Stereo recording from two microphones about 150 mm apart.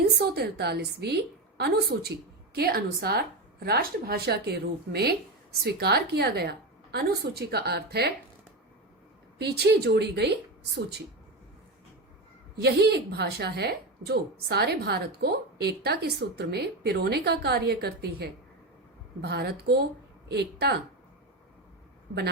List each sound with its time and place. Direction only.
0.0 s a woman's voice: 90° right
9.4 s a woman's voice: 90° right
12.6 s a woman's voice: 90° right